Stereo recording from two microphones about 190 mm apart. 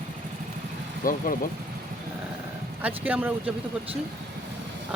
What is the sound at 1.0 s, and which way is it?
Speech, 45° left (ahead or behind).